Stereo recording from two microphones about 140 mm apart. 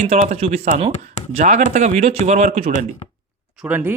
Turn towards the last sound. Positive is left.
turn(degrees=-10)  # may be behind; listen again after turning